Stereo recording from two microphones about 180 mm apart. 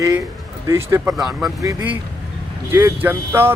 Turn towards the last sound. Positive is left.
turn(degrees=-15)  # may be behind; listen again after turning